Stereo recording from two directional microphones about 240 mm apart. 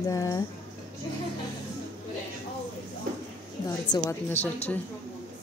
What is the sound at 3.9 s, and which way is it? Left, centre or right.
Speech, centre.